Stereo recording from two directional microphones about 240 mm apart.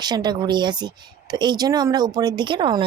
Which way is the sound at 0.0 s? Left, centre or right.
Centre.